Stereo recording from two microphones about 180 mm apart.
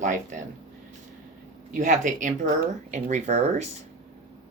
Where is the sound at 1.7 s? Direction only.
45° right (ahead or behind).